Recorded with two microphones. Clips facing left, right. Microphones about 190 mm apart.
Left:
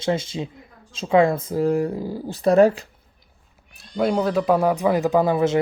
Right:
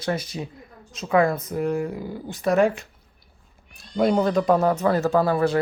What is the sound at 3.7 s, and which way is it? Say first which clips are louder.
Speech: right 1 dB; centre (ahead or behind).